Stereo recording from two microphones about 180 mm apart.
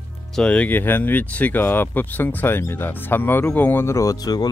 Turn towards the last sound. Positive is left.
turn(degrees=20)  # may be behind; listen again after turning